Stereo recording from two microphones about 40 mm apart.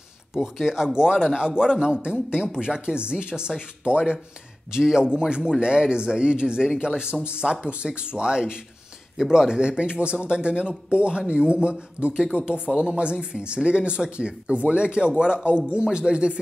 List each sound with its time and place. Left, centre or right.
0.3 s speech: centre; by 16.3 s right